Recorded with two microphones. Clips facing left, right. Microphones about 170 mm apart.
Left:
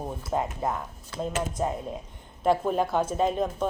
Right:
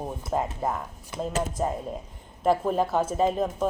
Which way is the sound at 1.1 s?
20° right (ahead or behind).